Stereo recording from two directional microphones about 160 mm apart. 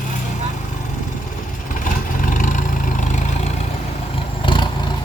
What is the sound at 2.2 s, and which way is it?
Vehicle, 55° left (ahead or behind).